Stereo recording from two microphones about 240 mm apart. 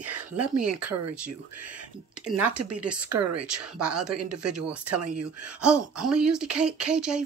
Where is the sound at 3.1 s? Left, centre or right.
Right.